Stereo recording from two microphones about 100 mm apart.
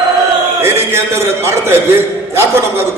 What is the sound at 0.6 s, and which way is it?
A man's voice, 25° right (ahead or behind).